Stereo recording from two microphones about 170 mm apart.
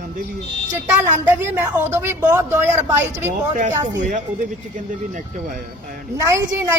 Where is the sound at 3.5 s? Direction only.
45° right (ahead or behind).